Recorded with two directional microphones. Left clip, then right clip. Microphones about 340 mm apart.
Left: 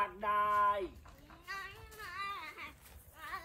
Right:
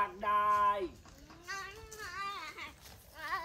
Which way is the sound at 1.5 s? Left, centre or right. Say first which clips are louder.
Right 2 dB; right.